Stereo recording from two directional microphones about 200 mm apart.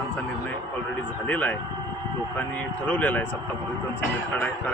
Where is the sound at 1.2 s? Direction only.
5° left (ahead or behind).